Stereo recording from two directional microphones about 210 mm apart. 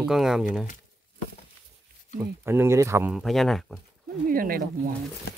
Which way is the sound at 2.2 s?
10° right (ahead or behind).